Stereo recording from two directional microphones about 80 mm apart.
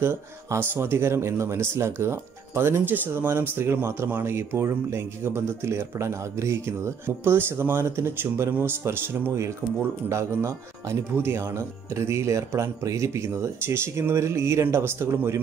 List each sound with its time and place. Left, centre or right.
0.0 s speech: right